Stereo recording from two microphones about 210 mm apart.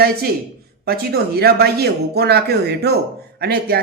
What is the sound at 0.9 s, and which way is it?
A man's voice, 50° right (ahead or behind).